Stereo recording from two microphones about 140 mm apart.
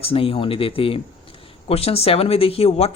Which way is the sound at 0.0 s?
45° left (ahead or behind).